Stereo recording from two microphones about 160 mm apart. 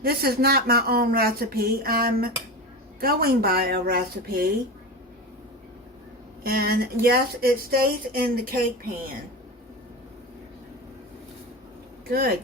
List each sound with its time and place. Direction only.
0.0 s speech: 70° right (ahead or behind)
6.4 s speech: 75° right (ahead or behind)
12.0 s speech: 70° right (ahead or behind)